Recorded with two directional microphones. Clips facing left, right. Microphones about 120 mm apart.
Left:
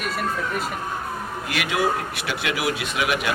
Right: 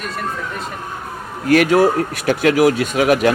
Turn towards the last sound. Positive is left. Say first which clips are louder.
# right 10 dB
turn(degrees=-40)  # may be behind; listen again after turning